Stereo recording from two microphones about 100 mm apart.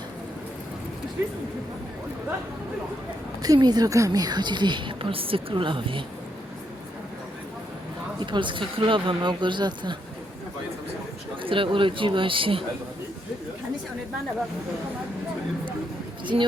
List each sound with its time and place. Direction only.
3.4 s a woman's voice: 40° right (ahead or behind)
8.3 s a woman's voice: 55° right (ahead or behind)
11.4 s speech: 60° right (ahead or behind)
16.2 s speech: 55° right (ahead or behind)